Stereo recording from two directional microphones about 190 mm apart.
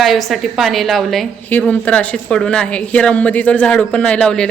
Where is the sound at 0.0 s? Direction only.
Centre (ahead or behind).